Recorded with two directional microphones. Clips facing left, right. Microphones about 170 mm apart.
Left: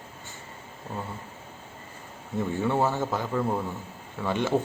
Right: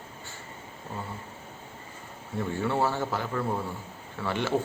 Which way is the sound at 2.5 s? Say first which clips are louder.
Left 2 dB; 20° left (ahead or behind).